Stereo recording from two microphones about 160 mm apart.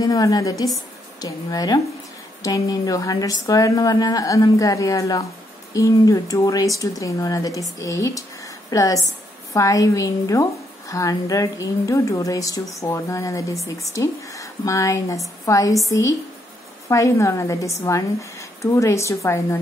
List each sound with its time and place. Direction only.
0.0 s a woman's voice: 25° left (ahead or behind)